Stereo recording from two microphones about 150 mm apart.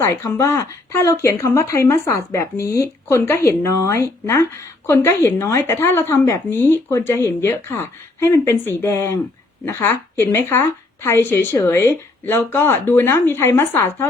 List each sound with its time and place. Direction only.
0.0 s a woman's voice: 20° left (ahead or behind)